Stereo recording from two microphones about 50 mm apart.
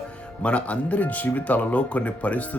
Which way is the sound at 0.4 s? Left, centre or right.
Left.